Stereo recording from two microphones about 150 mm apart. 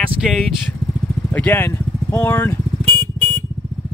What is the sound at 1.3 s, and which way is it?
Speech, 10° left (ahead or behind).